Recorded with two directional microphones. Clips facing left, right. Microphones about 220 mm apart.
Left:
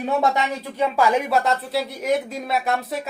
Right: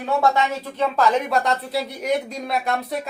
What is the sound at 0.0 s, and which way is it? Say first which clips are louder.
Speech: right 1 dB; 20° left (ahead or behind).